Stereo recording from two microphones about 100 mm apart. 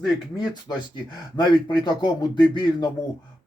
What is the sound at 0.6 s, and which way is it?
Speech, 45° left (ahead or behind).